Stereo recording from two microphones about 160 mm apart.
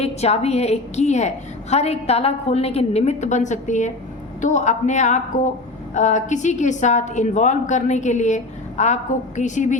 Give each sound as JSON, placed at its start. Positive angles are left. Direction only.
{"t": 0.0, "sound": "a woman's voice", "side_deg": 40}